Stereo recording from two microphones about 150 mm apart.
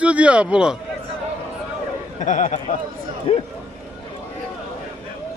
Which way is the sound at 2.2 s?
55° left (ahead or behind).